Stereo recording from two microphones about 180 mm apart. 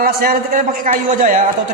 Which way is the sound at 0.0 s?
55° right (ahead or behind).